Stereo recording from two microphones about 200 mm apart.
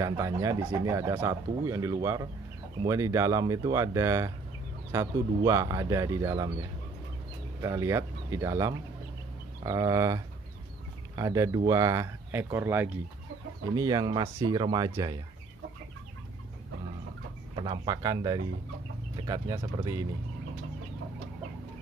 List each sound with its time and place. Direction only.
0.0 s speech: 15° right (ahead or behind)
7.6 s speech: 15° right (ahead or behind)
17.6 s speech: 20° right (ahead or behind)